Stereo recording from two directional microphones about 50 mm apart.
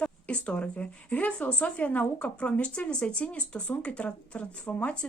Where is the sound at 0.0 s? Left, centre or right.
Left.